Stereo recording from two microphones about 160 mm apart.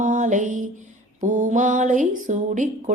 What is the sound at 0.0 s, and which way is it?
Music, 55° right (ahead or behind).